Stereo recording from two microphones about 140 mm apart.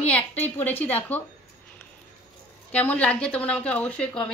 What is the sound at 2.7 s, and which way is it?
Speech, 10° left (ahead or behind).